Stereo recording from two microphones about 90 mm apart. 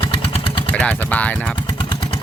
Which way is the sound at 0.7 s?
15° left (ahead or behind).